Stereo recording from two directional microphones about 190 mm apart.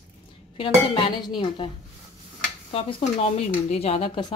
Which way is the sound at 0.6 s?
30° left (ahead or behind).